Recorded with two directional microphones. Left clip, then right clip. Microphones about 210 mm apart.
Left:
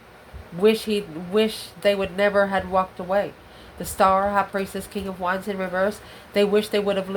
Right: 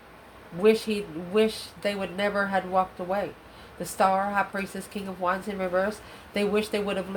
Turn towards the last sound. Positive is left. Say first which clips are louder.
# left 6 dB
turn(degrees=25)  # may be behind; listen again after turning